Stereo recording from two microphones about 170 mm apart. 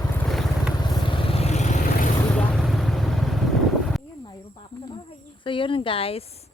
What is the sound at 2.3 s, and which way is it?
Vehicle, 5° left (ahead or behind).